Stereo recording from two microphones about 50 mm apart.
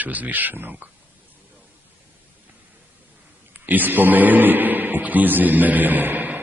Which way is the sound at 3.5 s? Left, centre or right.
Right.